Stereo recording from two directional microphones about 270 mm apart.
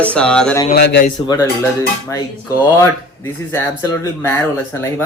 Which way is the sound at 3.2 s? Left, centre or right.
Centre.